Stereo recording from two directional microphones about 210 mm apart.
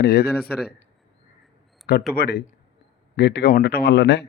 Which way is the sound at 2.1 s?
50° left (ahead or behind).